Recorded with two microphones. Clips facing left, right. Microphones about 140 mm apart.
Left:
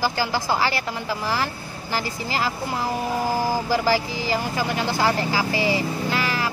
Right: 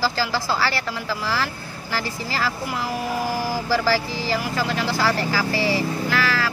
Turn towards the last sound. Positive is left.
turn(degrees=20)  # may be behind; listen again after turning